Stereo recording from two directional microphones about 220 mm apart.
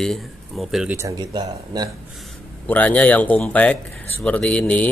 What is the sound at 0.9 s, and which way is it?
Speech, 15° right (ahead or behind).